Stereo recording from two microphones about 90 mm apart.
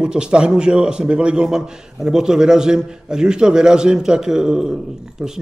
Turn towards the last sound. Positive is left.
turn(degrees=-5)  # may be behind; listen again after turning